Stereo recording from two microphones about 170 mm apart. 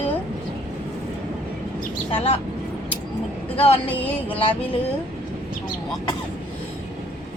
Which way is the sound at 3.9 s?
10° left (ahead or behind).